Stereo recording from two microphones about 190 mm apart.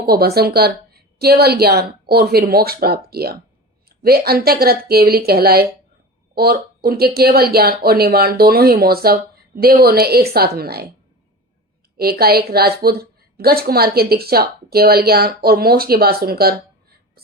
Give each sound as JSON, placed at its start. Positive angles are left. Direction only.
{"t": 0.0, "sound": "a woman's voice", "side_deg": -55}
{"t": 11.9, "sound": "a woman's voice", "side_deg": -55}